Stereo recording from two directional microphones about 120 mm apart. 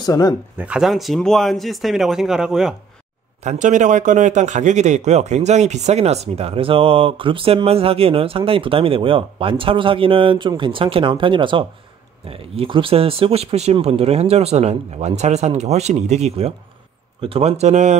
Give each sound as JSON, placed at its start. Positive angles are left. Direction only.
{"t": 0.0, "sound": "speech", "side_deg": 30}
{"t": 0.6, "sound": "speech", "side_deg": -5}
{"t": 3.4, "sound": "speech", "side_deg": -90}